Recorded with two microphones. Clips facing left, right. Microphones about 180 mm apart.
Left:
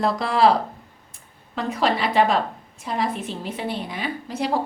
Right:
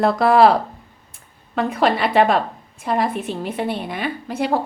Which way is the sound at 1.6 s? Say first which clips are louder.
Right 4 dB; 55° right (ahead or behind).